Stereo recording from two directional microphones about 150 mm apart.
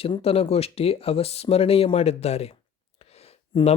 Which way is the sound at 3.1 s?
40° left (ahead or behind).